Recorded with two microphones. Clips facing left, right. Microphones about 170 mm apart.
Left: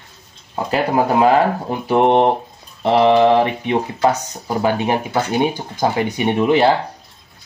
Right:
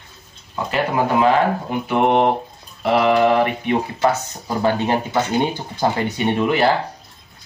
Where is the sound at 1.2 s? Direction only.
35° left (ahead or behind).